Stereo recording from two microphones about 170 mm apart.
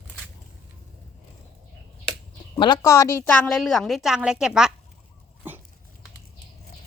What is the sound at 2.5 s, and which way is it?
Speech, 25° left (ahead or behind).